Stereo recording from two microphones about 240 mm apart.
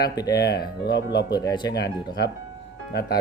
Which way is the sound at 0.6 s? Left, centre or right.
Left.